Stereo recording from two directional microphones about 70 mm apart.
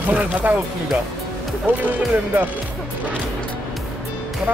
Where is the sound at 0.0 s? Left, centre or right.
Right.